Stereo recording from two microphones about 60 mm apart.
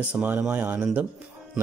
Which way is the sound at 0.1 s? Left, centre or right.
Right.